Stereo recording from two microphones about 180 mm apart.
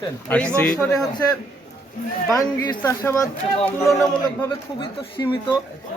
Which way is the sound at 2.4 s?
20° left (ahead or behind).